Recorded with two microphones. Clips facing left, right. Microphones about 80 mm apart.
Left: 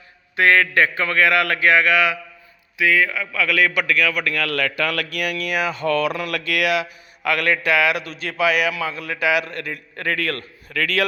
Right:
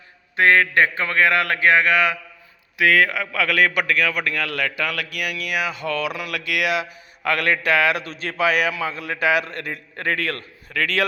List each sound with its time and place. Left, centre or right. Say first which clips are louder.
0.3 s a man's voice: even; right
2.7 s a man's voice: right 1 dB; right
3.4 s a man's voice: even; right
4.4 s speech: left 2 dB; centre
7.3 s a man's voice: even; right